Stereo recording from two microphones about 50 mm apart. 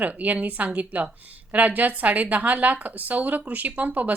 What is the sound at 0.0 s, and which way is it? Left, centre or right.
A woman's voice, right.